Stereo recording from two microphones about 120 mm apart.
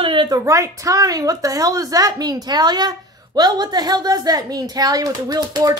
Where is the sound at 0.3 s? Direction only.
25° right (ahead or behind).